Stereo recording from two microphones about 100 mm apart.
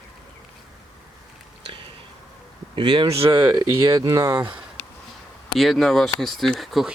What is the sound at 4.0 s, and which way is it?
Speech, 45° right (ahead or behind).